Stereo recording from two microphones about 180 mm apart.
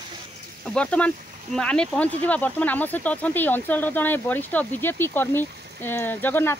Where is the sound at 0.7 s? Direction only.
5° left (ahead or behind).